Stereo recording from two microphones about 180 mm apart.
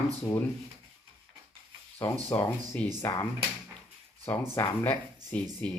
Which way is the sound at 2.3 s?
15° left (ahead or behind).